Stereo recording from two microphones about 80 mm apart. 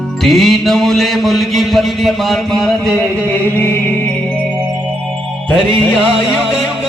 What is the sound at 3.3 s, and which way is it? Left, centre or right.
Music, left.